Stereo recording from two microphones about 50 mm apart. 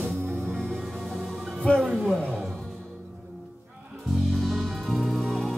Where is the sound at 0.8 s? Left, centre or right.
Centre.